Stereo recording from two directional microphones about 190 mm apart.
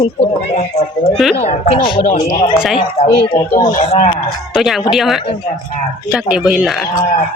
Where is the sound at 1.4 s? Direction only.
30° left (ahead or behind).